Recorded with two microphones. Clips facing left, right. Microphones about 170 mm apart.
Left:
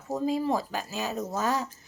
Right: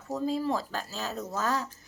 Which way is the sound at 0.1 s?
15° left (ahead or behind).